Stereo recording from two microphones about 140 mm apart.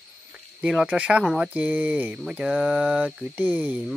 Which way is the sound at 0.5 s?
5° right (ahead or behind).